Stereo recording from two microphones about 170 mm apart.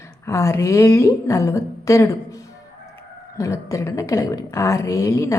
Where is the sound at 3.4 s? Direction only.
20° left (ahead or behind).